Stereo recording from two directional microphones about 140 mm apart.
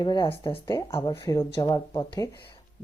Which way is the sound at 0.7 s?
20° left (ahead or behind).